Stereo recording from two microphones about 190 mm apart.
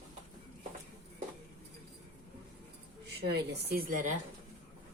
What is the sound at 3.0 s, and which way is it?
Speech, 60° right (ahead or behind).